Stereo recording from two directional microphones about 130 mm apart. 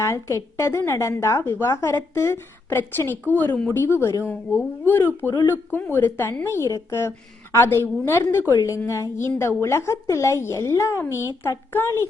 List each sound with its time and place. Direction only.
0.0 s a woman's voice: 20° left (ahead or behind)